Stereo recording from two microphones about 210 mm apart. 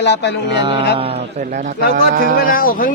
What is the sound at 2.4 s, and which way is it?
Speech, 40° left (ahead or behind).